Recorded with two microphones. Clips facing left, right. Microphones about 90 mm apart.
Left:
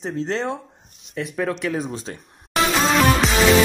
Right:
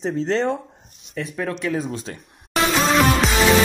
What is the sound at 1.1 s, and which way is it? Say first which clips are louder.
Speech: left 2 dB; 20° left (ahead or behind).